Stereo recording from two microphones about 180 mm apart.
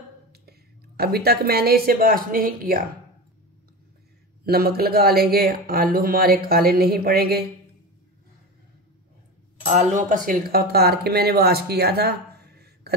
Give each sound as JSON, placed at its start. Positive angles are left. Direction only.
{"t": 0.3, "sound": "a woman's voice", "side_deg": -60}
{"t": 4.5, "sound": "speech", "side_deg": -55}
{"t": 9.7, "sound": "speech", "side_deg": -40}